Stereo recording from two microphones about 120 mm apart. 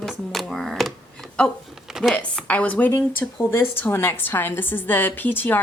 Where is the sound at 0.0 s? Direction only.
Centre (ahead or behind).